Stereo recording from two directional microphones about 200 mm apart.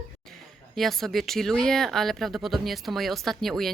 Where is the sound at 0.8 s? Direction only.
Centre (ahead or behind).